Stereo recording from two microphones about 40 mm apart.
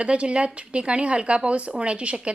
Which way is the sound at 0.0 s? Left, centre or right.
Right.